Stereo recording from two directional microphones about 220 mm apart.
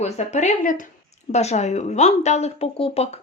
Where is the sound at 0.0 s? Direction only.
30° left (ahead or behind).